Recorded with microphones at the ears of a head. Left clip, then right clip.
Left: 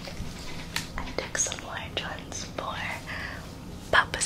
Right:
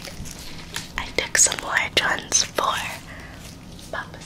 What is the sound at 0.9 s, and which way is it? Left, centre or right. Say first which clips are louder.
Speech: right 12 dB; right.